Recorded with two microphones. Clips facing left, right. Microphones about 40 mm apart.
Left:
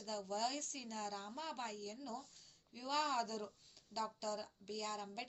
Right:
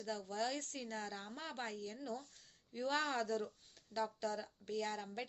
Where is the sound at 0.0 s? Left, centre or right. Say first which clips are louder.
Right 1 dB; right.